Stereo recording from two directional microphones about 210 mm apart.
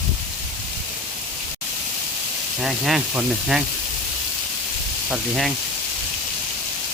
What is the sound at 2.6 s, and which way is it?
Speech, centre (ahead or behind).